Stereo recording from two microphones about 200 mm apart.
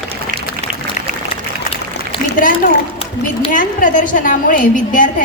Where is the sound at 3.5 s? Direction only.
40° left (ahead or behind).